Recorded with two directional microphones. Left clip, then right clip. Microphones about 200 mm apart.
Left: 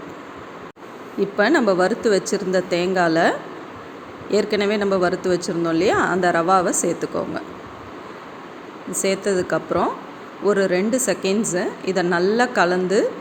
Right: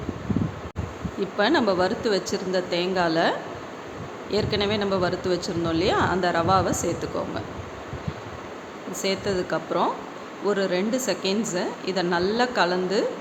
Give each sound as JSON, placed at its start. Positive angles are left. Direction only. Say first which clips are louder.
{"t": 1.2, "sound": "speech", "louder": "left 4 dB", "side_deg": 20}
{"t": 8.9, "sound": "speech", "louder": "left 5 dB", "side_deg": 20}